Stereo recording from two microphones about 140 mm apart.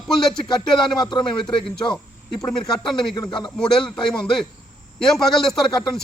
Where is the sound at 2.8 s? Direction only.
30° left (ahead or behind).